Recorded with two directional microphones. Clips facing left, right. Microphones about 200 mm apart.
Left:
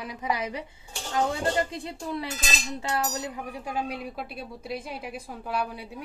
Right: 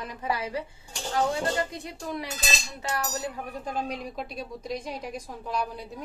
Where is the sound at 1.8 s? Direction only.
30° left (ahead or behind).